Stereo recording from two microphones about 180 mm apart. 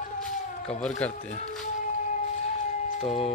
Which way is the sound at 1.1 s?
40° left (ahead or behind).